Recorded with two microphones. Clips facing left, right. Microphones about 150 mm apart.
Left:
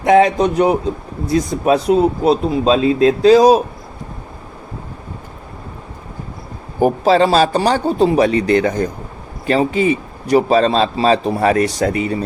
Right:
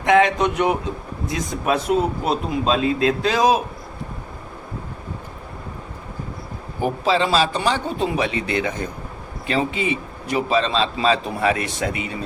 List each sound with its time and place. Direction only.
0.0 s a man's voice: 35° left (ahead or behind)
6.7 s a man's voice: 45° left (ahead or behind)